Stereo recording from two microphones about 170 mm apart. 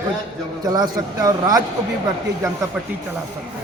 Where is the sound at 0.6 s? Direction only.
20° right (ahead or behind).